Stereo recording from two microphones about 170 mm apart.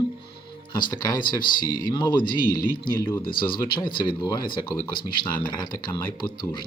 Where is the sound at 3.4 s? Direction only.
30° left (ahead or behind).